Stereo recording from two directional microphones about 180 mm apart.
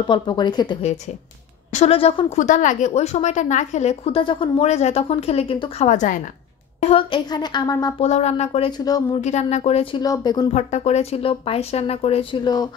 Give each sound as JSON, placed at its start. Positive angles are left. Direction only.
{"t": 0.0, "sound": "a woman's voice", "side_deg": 25}
{"t": 1.7, "sound": "a woman's voice", "side_deg": 35}
{"t": 2.3, "sound": "a woman's voice", "side_deg": 45}
{"t": 5.9, "sound": "a woman's voice", "side_deg": 45}
{"t": 6.8, "sound": "a woman's voice", "side_deg": 30}
{"t": 8.0, "sound": "a woman's voice", "side_deg": 40}
{"t": 9.2, "sound": "a woman's voice", "side_deg": 40}
{"t": 10.0, "sound": "a woman's voice", "side_deg": 20}
{"t": 10.5, "sound": "a woman's voice", "side_deg": 40}